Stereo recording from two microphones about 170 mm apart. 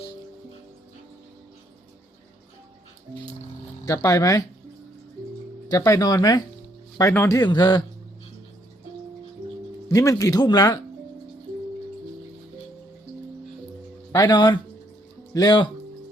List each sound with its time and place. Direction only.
3.8 s speech: 20° left (ahead or behind)
5.7 s speech: 20° left (ahead or behind)
9.9 s speech: 20° left (ahead or behind)
14.1 s speech: 25° left (ahead or behind)